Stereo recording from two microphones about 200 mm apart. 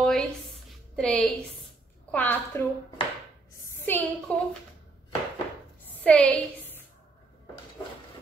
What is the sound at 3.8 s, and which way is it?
Speech, 10° left (ahead or behind).